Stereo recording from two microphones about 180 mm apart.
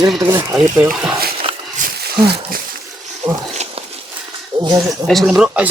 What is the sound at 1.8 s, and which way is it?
Wild animals, 45° right (ahead or behind).